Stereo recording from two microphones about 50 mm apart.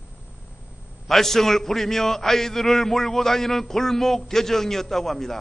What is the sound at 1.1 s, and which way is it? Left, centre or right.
A man's voice, centre.